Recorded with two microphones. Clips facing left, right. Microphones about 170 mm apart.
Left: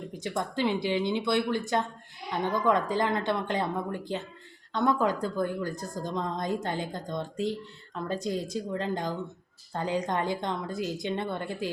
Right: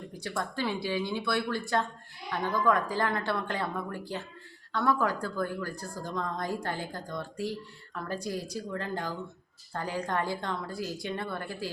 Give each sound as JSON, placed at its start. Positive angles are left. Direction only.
{"t": 0.1, "sound": "a woman's voice", "side_deg": 20}